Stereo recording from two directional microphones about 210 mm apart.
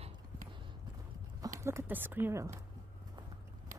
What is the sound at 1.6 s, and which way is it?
Speech, 10° right (ahead or behind).